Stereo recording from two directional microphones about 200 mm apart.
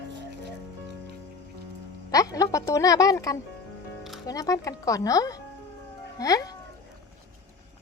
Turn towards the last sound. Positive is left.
turn(degrees=20)  # may be behind; listen again after turning